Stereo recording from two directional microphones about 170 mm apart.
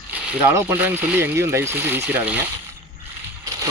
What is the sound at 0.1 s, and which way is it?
Speech, 10° right (ahead or behind).